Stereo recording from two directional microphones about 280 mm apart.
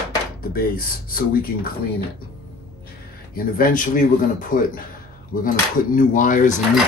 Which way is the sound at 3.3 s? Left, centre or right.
Left.